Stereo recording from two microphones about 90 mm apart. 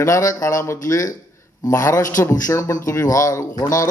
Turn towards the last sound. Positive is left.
turn(degrees=35)  # may be behind; listen again after turning